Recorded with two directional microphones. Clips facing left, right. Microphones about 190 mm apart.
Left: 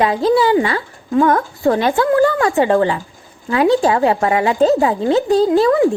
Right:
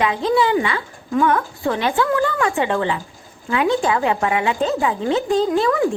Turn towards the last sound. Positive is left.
turn(degrees=35)  # may be behind; listen again after turning